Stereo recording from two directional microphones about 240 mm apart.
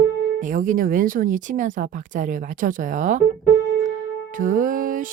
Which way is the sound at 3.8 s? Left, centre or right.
Right.